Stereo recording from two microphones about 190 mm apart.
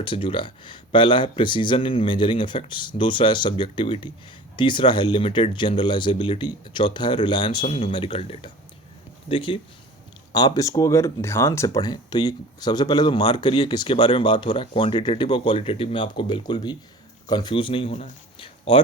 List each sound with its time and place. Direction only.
0.0 s speech: 25° left (ahead or behind)